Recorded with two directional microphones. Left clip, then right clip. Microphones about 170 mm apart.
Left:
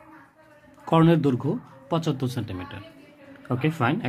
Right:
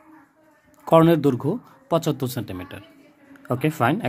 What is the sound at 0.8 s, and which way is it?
Speech, 45° right (ahead or behind).